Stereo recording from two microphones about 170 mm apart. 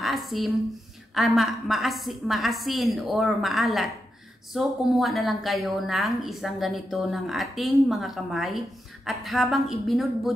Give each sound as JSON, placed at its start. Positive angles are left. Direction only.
{"t": 0.0, "sound": "a woman's voice", "side_deg": 0}